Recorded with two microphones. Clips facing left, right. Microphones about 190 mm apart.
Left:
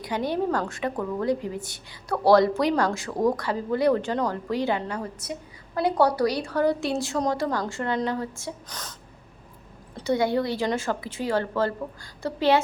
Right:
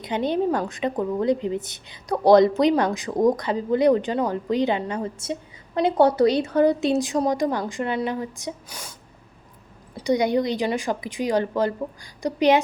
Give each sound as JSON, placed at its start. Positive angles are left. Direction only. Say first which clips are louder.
{"t": 0.0, "sound": "a woman's voice", "louder": "right 3 dB", "side_deg": -20}